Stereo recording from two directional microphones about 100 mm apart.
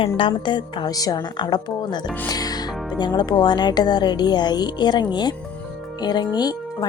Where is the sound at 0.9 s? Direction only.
40° left (ahead or behind).